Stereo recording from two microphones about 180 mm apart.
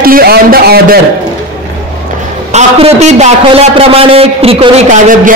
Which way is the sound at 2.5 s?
35° right (ahead or behind).